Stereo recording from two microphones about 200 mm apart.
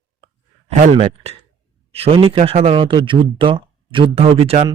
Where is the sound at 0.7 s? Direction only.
40° right (ahead or behind).